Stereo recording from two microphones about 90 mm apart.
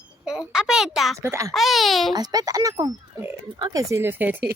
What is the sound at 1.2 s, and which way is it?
Speech, 35° right (ahead or behind).